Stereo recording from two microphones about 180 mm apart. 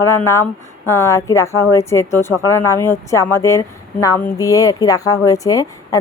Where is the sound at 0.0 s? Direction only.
15° left (ahead or behind).